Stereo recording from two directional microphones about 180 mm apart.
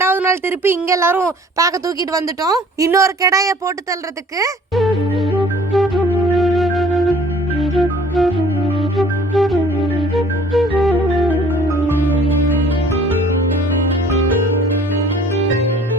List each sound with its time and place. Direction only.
0.0 s speech: 10° right (ahead or behind)
5.7 s flute: centre (ahead or behind)
7.6 s music: centre (ahead or behind)